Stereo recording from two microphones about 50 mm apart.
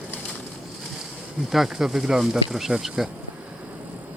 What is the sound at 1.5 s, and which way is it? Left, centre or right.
Speech, centre.